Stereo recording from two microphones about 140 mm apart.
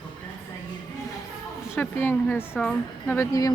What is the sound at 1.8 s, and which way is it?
A woman's voice, 10° left (ahead or behind).